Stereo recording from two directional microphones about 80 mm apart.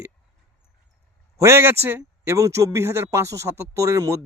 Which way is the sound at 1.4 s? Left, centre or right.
Right.